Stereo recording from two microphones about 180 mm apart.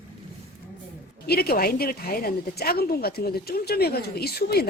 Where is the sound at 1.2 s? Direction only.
60° left (ahead or behind).